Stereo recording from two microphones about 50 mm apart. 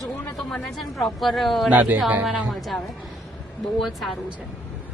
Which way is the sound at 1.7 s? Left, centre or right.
Right.